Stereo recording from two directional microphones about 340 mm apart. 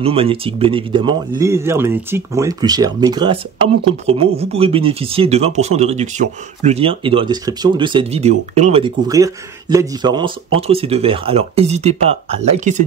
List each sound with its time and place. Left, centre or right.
0.0 s speech: centre